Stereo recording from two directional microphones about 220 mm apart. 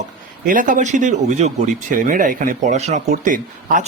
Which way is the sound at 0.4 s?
35° right (ahead or behind).